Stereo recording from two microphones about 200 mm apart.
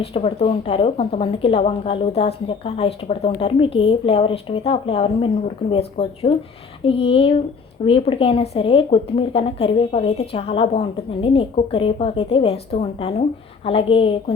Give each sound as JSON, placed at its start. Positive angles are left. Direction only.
{"t": 0.0, "sound": "speech", "side_deg": 30}